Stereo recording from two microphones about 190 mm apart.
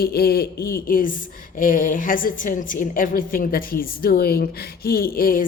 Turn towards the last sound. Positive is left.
turn(degrees=50)  # may be behind; listen again after turning